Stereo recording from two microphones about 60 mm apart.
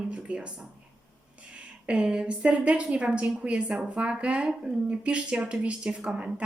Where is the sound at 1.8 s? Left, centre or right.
Centre.